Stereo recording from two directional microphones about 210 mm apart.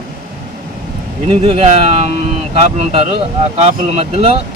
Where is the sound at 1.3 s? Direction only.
30° right (ahead or behind).